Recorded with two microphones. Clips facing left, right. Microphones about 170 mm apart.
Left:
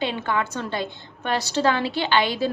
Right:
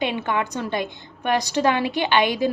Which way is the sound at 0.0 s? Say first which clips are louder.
Right 1 dB; 15° right (ahead or behind).